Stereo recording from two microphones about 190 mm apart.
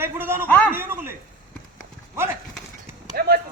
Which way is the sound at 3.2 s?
55° right (ahead or behind).